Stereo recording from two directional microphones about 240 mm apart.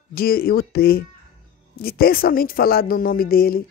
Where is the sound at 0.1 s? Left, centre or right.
Left.